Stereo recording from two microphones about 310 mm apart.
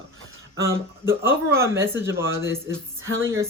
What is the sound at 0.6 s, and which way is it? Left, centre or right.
Speech, centre.